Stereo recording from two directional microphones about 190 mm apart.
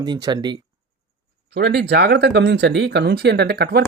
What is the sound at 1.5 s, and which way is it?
Speech, 60° right (ahead or behind).